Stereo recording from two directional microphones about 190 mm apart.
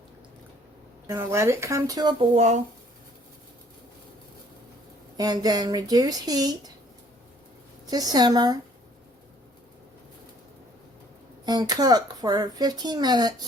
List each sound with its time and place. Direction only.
1.0 s speech: 15° right (ahead or behind)
2.3 s speech: 35° right (ahead or behind)
5.1 s speech: 20° right (ahead or behind)
7.9 s speech: 20° right (ahead or behind)
11.4 s speech: 20° right (ahead or behind)